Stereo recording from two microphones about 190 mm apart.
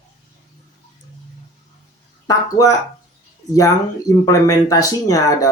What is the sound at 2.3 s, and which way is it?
Speech, 20° left (ahead or behind).